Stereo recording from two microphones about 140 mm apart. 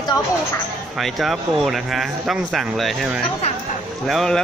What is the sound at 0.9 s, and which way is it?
Speech, centre (ahead or behind).